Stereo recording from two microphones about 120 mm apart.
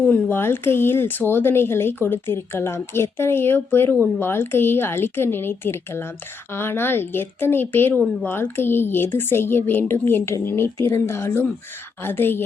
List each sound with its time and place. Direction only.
0.0 s a woman's voice: 15° left (ahead or behind)